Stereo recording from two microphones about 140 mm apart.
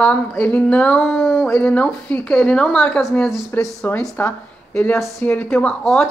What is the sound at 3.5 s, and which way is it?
Speech, 10° left (ahead or behind).